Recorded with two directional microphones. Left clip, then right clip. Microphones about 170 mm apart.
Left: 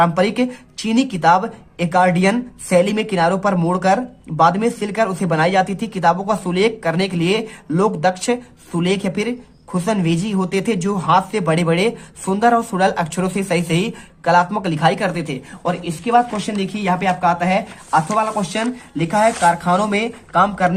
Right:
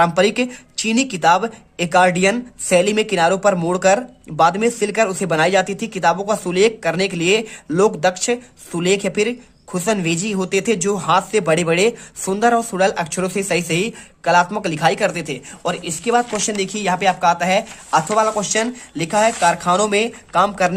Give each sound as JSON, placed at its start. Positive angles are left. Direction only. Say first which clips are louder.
{"t": 0.0, "sound": "speech", "louder": "right 1 dB", "side_deg": -25}